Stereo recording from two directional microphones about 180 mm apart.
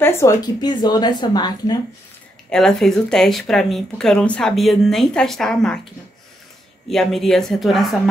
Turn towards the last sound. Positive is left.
turn(degrees=0)  # may be behind; listen again after turning